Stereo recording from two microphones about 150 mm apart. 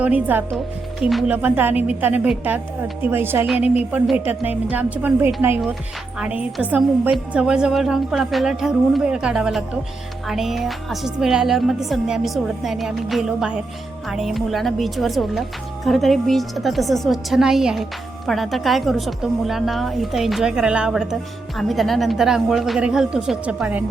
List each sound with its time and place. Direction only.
0.0 s a woman's voice: 10° right (ahead or behind)
3.4 s a woman's voice: 5° right (ahead or behind)